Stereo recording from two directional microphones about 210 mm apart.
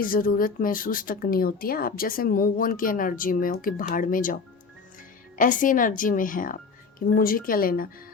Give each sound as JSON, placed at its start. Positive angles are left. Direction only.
{"t": 0.0, "sound": "speech", "side_deg": 45}
{"t": 5.4, "sound": "a woman's voice", "side_deg": 40}